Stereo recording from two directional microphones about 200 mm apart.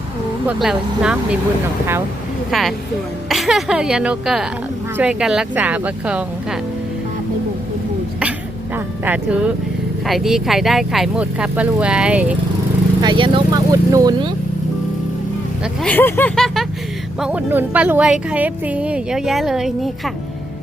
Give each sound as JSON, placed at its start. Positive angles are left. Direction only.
{"t": 0.4, "sound": "speech", "side_deg": -5}
{"t": 2.5, "sound": "speech", "side_deg": 0}
{"t": 8.7, "sound": "speech", "side_deg": -10}
{"t": 13.0, "sound": "speech", "side_deg": -25}
{"t": 15.6, "sound": "speech", "side_deg": 5}